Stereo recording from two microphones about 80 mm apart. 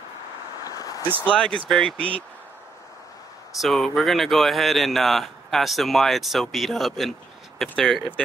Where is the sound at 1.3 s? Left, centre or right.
Centre.